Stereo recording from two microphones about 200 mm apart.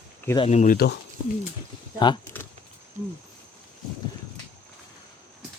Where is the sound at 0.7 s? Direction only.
55° left (ahead or behind).